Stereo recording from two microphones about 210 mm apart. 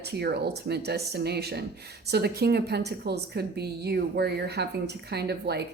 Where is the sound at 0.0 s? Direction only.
50° right (ahead or behind).